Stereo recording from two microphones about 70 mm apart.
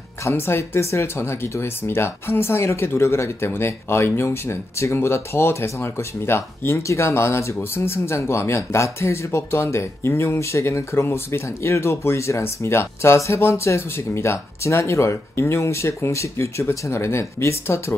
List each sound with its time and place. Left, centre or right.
0.3 s speech: left